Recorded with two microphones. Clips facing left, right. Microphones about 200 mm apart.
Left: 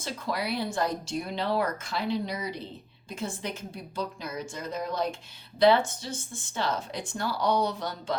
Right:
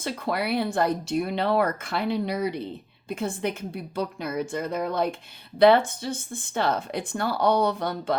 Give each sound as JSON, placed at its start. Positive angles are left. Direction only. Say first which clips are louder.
{"t": 0.0, "sound": "speech", "louder": "right 4 dB", "side_deg": -60}